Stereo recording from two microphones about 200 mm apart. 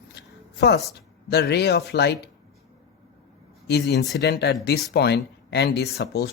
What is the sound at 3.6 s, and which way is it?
Speech, 55° left (ahead or behind).